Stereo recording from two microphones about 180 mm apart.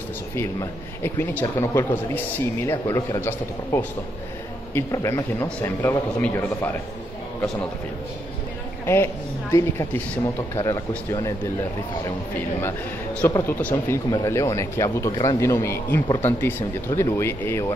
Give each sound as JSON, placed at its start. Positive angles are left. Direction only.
{"t": 0.4, "sound": "speech", "side_deg": 15}
{"t": 8.8, "sound": "speech", "side_deg": 15}
{"t": 12.6, "sound": "a man's voice", "side_deg": 10}